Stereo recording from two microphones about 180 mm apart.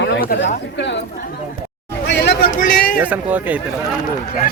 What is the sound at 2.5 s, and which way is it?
Speech, 50° left (ahead or behind).